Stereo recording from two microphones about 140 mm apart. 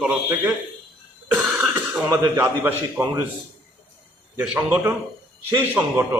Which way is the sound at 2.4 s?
15° right (ahead or behind).